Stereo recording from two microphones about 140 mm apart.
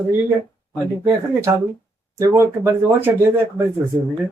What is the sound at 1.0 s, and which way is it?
Speech, 20° right (ahead or behind).